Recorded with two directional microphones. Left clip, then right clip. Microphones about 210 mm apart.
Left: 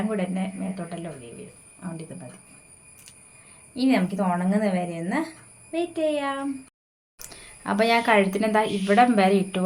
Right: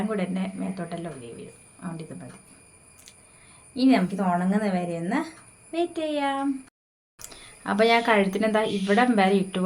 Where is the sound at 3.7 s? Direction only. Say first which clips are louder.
Right 1 dB; 5° right (ahead or behind).